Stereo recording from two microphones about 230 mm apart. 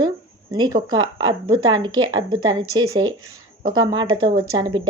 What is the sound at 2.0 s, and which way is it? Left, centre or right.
Speech, right.